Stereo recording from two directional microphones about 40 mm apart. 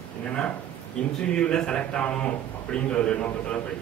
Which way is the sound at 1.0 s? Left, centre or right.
Left.